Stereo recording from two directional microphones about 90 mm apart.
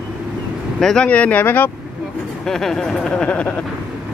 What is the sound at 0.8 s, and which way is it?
Speech, 5° left (ahead or behind).